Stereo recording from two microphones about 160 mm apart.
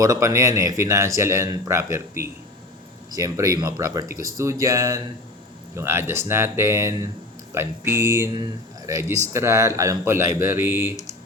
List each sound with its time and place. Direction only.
0.0 s a man's voice: 20° right (ahead or behind)